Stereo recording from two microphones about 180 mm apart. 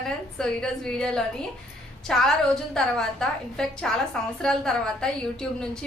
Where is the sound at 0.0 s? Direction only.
5° left (ahead or behind).